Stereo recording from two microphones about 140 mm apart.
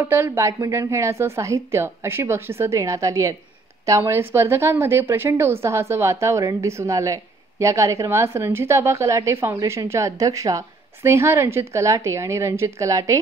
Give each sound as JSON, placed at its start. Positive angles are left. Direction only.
{"t": 0.0, "sound": "a woman's voice", "side_deg": -15}